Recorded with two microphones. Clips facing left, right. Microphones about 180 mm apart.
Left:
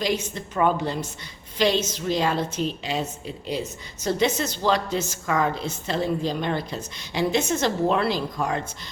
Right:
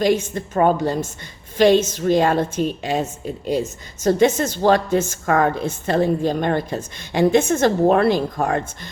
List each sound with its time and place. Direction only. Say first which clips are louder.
0.0 s a woman's voice: right 7 dB; 50° right (ahead or behind)